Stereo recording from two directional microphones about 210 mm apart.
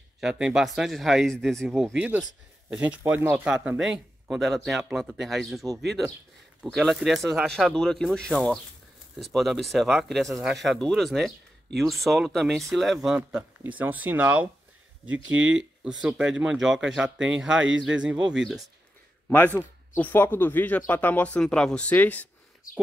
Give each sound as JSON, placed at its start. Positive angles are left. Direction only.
{"t": 0.2, "sound": "speech", "side_deg": -5}
{"t": 15.2, "sound": "speech", "side_deg": -65}
{"t": 16.0, "sound": "speech", "side_deg": -5}
{"t": 17.6, "sound": "speech", "side_deg": -60}
{"t": 17.8, "sound": "speech", "side_deg": -5}
{"t": 19.2, "sound": "a man's voice", "side_deg": 10}